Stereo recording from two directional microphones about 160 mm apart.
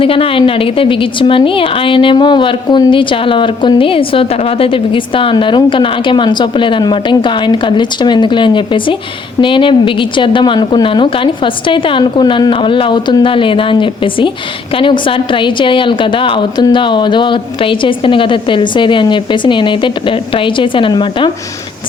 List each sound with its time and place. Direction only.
0.0 s a woman's voice: 35° left (ahead or behind)